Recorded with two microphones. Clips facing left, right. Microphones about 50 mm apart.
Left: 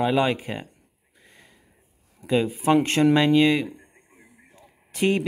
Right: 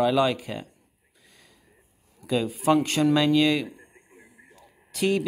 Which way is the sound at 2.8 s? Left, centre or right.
Left.